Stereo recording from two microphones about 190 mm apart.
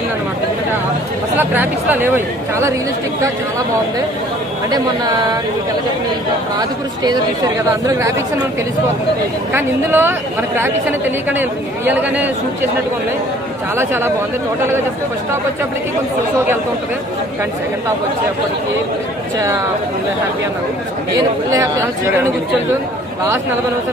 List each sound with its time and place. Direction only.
1.4 s speech: 10° right (ahead or behind)
7.0 s speech: 20° right (ahead or behind)
9.5 s speech: 10° right (ahead or behind)
13.7 s speech: 10° right (ahead or behind)
21.2 s speech: 15° right (ahead or behind)